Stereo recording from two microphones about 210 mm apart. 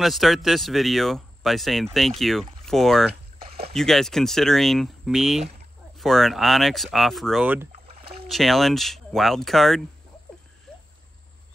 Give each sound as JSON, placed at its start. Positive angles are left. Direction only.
{"t": 0.0, "sound": "speech", "side_deg": 0}
{"t": 3.4, "sound": "a sound", "side_deg": -30}
{"t": 3.7, "sound": "speech", "side_deg": 0}
{"t": 7.9, "sound": "rowboat", "side_deg": -30}
{"t": 8.3, "sound": "speech", "side_deg": 0}